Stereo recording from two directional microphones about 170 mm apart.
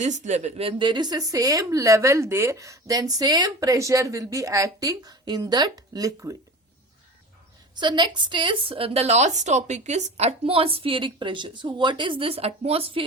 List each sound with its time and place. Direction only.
0.0 s a woman's voice: 45° right (ahead or behind); by 6.3 s 20° right (ahead or behind)
7.8 s a woman's voice: 25° right (ahead or behind)